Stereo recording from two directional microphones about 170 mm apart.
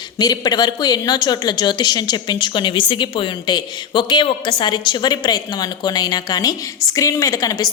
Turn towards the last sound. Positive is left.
turn(degrees=20)  # may be behind; listen again after turning